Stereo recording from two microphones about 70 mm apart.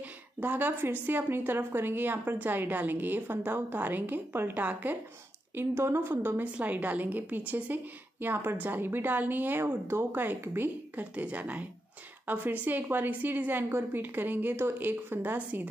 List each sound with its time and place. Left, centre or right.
0.0 s a woman's voice: right
6.4 s a woman's voice: right